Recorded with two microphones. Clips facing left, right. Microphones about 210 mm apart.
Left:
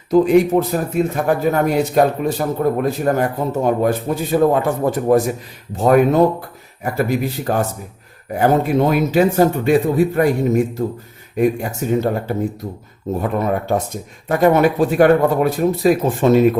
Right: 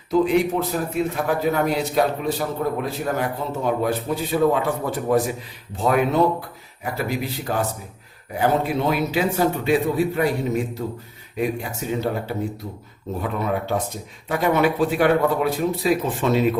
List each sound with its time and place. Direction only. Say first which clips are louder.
0.1 s a man's voice: left 6 dB; 45° left (ahead or behind)